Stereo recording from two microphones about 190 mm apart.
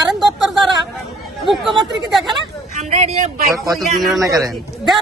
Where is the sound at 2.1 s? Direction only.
Centre (ahead or behind).